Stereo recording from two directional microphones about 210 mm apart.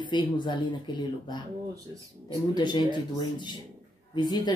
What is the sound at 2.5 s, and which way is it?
Speech, 20° left (ahead or behind).